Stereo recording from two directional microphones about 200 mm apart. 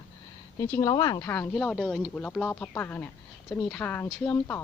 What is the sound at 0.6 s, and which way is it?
Speech, 15° left (ahead or behind).